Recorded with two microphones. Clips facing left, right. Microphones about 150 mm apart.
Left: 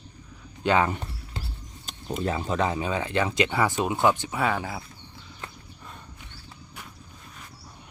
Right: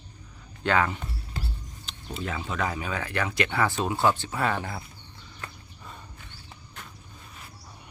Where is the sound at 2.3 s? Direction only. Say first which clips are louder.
Left 4 dB; 35° left (ahead or behind); by 4.3 s 15° left (ahead or behind).